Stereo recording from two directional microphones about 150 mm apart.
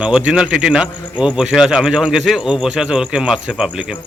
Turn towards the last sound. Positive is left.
turn(degrees=-5)  # may be behind; listen again after turning